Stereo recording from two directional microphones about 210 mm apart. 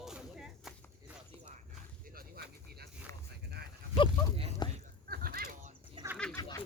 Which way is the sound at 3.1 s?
15° left (ahead or behind).